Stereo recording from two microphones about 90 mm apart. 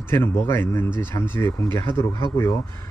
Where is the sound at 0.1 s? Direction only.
30° left (ahead or behind).